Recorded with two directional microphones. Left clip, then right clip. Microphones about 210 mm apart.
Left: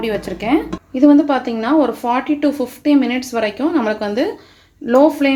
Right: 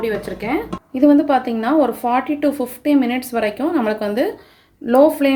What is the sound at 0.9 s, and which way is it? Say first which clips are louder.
A woman's voice: left 1 dB; 5° right (ahead or behind).